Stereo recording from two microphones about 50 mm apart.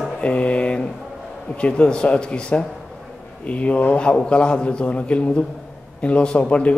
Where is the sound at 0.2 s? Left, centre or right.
Left.